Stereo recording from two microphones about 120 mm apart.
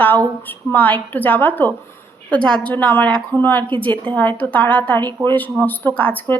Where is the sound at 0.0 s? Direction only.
15° left (ahead or behind).